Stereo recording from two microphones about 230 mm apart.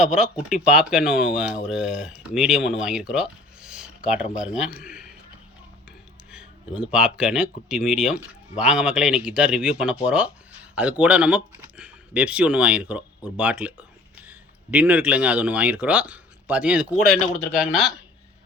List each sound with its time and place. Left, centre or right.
0.0 s speech: centre
4.9 s a sound: centre
6.3 s speech: centre